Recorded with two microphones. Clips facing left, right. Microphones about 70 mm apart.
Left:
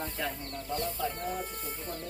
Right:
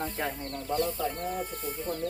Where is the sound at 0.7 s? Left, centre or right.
Centre.